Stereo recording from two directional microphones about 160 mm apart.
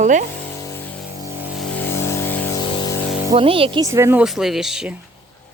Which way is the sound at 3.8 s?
15° right (ahead or behind).